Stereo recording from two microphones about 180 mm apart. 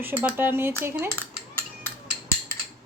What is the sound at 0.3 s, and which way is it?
Speech, 10° right (ahead or behind).